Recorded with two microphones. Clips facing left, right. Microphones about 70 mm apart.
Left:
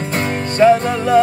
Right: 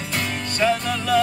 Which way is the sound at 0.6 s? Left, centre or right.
Left.